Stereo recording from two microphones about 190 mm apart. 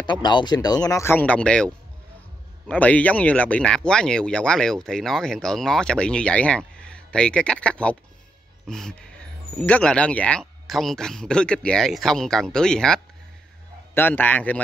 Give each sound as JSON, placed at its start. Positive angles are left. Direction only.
{"t": 0.0, "sound": "speech", "side_deg": 25}
{"t": 2.7, "sound": "a man's voice", "side_deg": 5}